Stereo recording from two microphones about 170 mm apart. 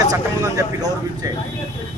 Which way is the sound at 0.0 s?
20° right (ahead or behind).